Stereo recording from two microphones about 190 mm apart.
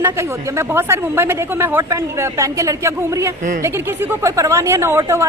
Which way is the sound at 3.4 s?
45° right (ahead or behind).